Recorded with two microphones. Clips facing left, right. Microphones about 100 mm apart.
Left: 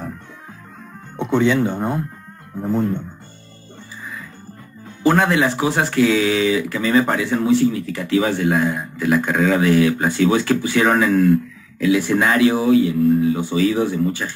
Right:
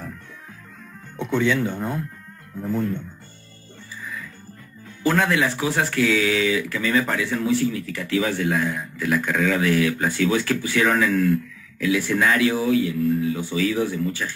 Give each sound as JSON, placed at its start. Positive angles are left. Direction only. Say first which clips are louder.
{"t": 1.1, "sound": "speech", "louder": "left 5 dB", "side_deg": 25}
{"t": 4.0, "sound": "music", "louder": "left 1 dB", "side_deg": 30}
{"t": 4.8, "sound": "speech", "louder": "left 5 dB", "side_deg": 30}